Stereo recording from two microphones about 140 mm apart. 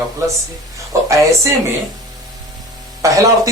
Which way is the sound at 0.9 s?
20° right (ahead or behind).